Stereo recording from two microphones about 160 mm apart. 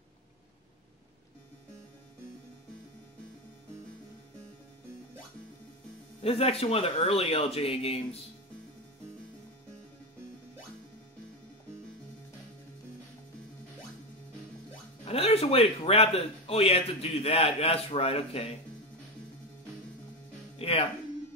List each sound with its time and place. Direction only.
6.2 s a man's voice: 40° left (ahead or behind)
15.0 s a man's voice: 40° left (ahead or behind)
20.5 s music: 35° left (ahead or behind)